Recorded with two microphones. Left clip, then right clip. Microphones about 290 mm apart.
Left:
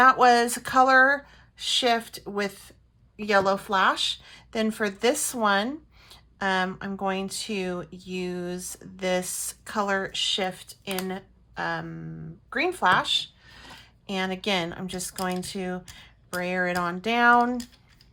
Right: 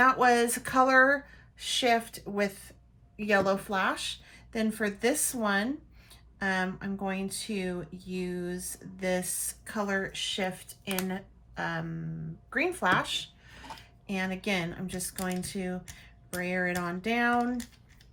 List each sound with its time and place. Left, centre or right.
0.0 s speech: centre
14.1 s speech: centre